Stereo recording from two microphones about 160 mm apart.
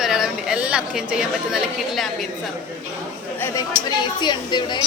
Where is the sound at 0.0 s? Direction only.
Centre (ahead or behind).